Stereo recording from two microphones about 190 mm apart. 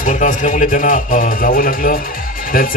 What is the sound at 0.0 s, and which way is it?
Speech, 45° left (ahead or behind).